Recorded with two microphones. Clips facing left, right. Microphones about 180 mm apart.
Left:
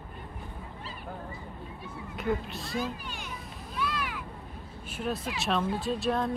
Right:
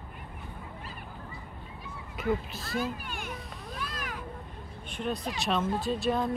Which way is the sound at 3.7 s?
45° right (ahead or behind).